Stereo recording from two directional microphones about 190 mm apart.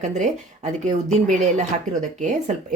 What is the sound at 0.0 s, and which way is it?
Speech, 40° right (ahead or behind).